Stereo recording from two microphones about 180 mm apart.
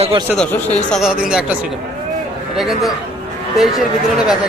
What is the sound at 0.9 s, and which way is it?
Speech, centre (ahead or behind).